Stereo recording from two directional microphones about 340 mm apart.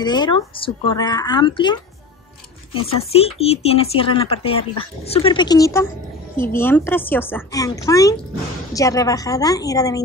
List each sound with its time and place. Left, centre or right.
0.0 s speech: centre